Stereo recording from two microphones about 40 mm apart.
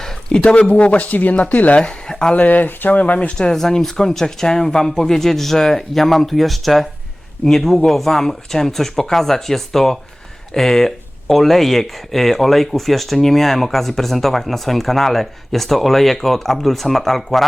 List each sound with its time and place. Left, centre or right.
0.0 s a sound: left
0.7 s speech: left
1.8 s speech: left
2.3 s speech: left
3.5 s speech: centre